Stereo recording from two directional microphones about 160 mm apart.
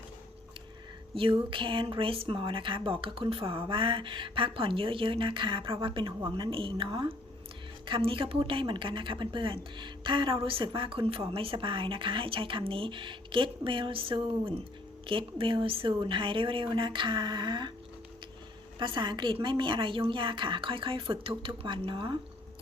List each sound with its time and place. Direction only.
1.1 s speech: 30° right (ahead or behind)
18.8 s speech: 30° right (ahead or behind)